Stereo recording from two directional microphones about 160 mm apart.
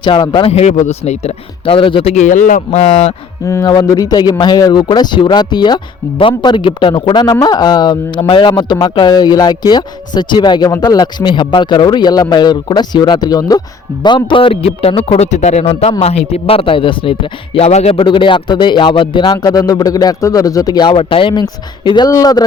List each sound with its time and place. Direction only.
0.0 s a man's voice: 30° left (ahead or behind)
3.4 s a man's voice: 20° left (ahead or behind)